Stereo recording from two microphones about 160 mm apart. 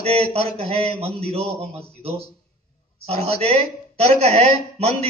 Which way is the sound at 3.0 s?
40° right (ahead or behind).